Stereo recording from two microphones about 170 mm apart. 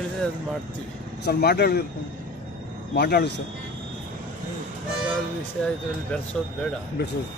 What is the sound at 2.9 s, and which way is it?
Speech, 75° left (ahead or behind).